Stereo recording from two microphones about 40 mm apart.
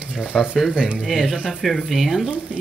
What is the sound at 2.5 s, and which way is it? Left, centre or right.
Speech, right.